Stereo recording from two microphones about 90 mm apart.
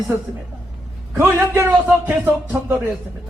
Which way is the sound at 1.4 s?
25° right (ahead or behind).